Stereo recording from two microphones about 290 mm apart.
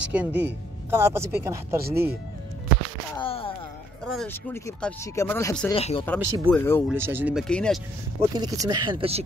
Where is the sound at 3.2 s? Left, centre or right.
Centre.